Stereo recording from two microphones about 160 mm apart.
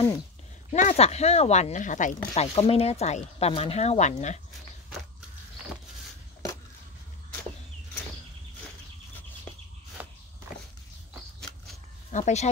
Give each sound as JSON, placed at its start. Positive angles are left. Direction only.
{"t": 0.7, "sound": "speech", "side_deg": 45}
{"t": 12.1, "sound": "speech", "side_deg": 45}